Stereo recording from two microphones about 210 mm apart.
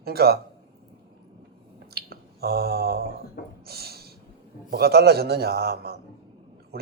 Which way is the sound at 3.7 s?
50° right (ahead or behind).